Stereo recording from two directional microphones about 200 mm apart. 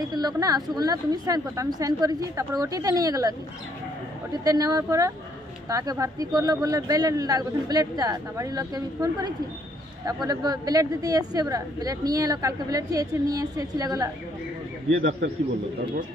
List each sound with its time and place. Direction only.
0.1 s a woman's voice: 20° right (ahead or behind)
14.9 s a man's voice: 65° right (ahead or behind)